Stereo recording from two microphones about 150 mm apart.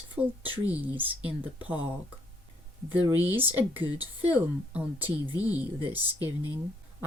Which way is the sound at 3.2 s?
15° right (ahead or behind).